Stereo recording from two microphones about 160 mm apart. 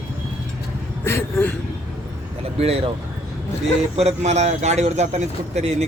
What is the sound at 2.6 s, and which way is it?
Speech, 40° right (ahead or behind).